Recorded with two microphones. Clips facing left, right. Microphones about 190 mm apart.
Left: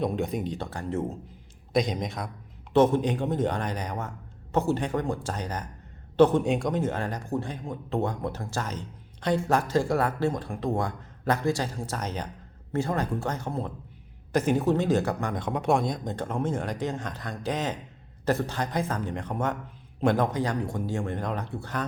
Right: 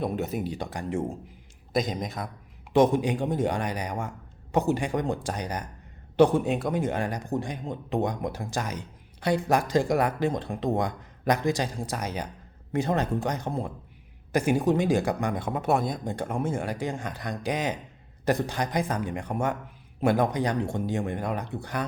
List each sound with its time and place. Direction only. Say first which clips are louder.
0.0 s speech: left 1 dB; 5° right (ahead or behind)
2.7 s speech: even; 15° right (ahead or behind)